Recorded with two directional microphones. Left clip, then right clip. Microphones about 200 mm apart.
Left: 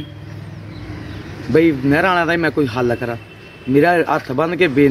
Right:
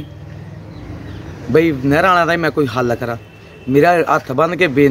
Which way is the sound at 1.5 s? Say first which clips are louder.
Right 1 dB; 15° right (ahead or behind).